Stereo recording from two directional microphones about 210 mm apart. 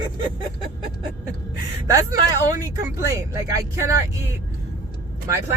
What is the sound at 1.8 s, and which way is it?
Speech, 15° right (ahead or behind).